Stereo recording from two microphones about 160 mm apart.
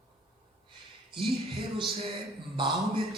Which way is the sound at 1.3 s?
Centre (ahead or behind).